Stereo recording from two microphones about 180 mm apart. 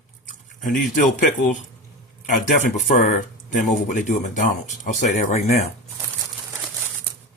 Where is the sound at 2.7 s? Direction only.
45° left (ahead or behind).